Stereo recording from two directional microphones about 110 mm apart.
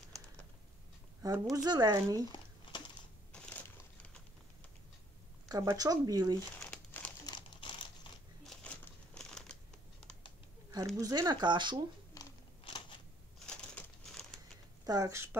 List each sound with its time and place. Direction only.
1.2 s speech: 35° right (ahead or behind)
5.5 s speech: 35° right (ahead or behind)
7.2 s typing: 45° left (ahead or behind)
8.5 s a sound: 5° left (ahead or behind)
11.0 s speech: 35° right (ahead or behind)
12.1 s a sound: 30° left (ahead or behind)
12.7 s a sound: 50° left (ahead or behind)
13.5 s crumpling: 5° left (ahead or behind)
14.9 s speech: 30° right (ahead or behind)